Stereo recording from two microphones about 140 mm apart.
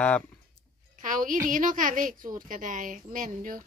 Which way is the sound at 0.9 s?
70° right (ahead or behind).